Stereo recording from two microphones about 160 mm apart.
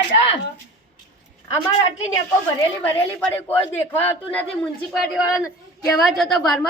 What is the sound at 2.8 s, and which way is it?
Speech, 10° left (ahead or behind).